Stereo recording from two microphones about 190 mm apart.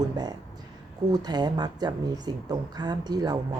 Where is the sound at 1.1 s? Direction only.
20° right (ahead or behind).